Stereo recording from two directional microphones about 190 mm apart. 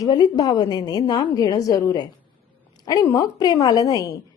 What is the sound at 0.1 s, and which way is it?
A woman's voice, 20° left (ahead or behind).